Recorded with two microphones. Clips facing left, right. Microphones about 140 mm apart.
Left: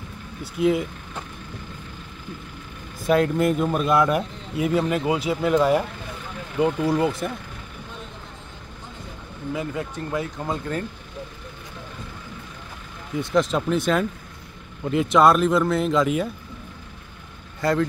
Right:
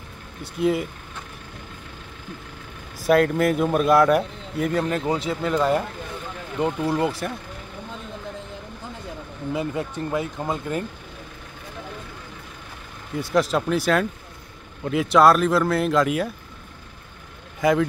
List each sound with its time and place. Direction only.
0.4 s speech: centre (ahead or behind)
3.1 s speech: centre (ahead or behind)
9.5 s speech: 25° right (ahead or behind)
13.2 s speech: 5° right (ahead or behind)
17.6 s speech: 10° right (ahead or behind)